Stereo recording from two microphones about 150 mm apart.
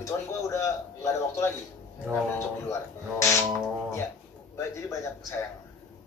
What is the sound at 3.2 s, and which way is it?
Speech, 20° left (ahead or behind).